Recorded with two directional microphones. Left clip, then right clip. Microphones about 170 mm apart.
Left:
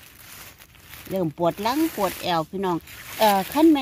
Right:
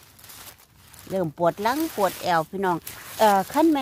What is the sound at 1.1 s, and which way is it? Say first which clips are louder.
Speech: right 1 dB; 10° right (ahead or behind).